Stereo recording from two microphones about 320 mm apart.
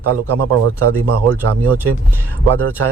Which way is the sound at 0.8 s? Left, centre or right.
Right.